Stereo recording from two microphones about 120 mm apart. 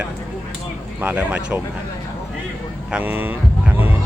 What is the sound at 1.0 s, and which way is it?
Speech, 15° right (ahead or behind).